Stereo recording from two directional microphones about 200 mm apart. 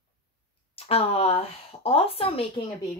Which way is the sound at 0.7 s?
30° left (ahead or behind).